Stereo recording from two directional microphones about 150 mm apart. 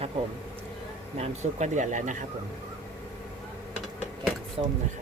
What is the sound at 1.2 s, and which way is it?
Speech, 50° right (ahead or behind).